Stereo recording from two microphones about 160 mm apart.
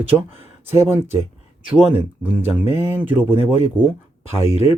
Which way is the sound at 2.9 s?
10° right (ahead or behind).